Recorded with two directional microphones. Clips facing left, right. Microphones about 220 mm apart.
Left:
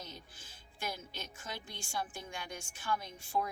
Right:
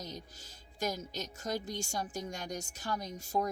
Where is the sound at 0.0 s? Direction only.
40° right (ahead or behind).